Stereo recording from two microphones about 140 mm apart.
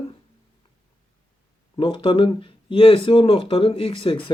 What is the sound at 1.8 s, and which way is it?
Speech, 40° left (ahead or behind).